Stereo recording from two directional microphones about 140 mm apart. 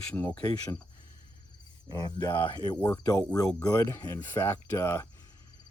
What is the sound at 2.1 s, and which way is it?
Speech, 35° left (ahead or behind).